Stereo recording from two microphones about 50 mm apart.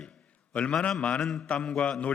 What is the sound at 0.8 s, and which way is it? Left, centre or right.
Speech, centre.